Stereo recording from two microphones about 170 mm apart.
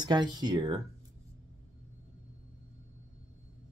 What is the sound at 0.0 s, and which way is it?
Speech, 25° right (ahead or behind).